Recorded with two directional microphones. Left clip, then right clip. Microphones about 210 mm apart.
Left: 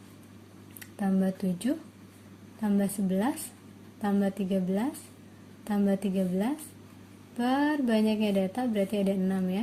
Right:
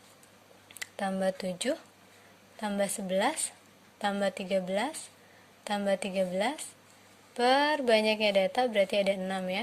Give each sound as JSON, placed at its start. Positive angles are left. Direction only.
{"t": 0.8, "sound": "a woman's voice", "side_deg": -35}